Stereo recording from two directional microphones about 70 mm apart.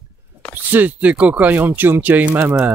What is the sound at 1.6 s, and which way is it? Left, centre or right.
Speech, right.